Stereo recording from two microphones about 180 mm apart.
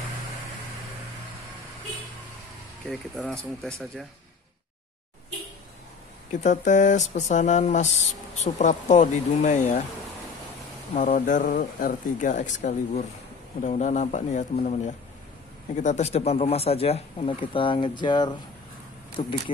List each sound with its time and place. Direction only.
2.9 s speech: centre (ahead or behind)
6.4 s speech: 45° left (ahead or behind)
11.0 s speech: 45° left (ahead or behind)